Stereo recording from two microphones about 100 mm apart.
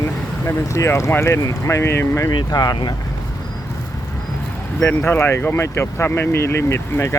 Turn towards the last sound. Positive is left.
turn(degrees=25)  # may be behind; listen again after turning